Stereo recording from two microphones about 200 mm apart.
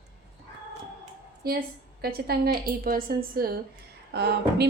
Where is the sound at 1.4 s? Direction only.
50° right (ahead or behind).